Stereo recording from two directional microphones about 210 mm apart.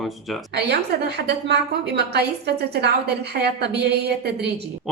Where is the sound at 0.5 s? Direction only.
50° right (ahead or behind).